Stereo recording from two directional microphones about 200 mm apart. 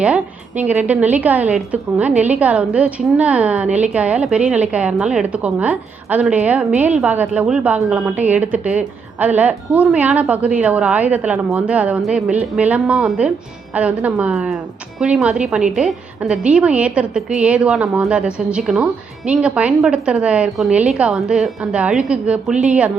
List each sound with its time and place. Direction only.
0.0 s a woman's voice: 5° right (ahead or behind)